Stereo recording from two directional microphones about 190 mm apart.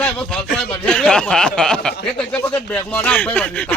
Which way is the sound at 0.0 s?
5° left (ahead or behind).